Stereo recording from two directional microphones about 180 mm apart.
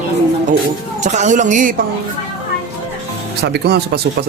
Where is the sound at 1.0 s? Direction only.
40° right (ahead or behind).